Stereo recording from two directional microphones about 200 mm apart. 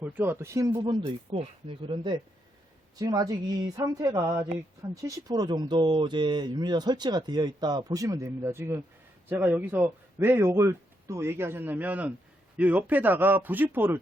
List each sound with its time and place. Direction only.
0.0 s a man's voice: 10° right (ahead or behind)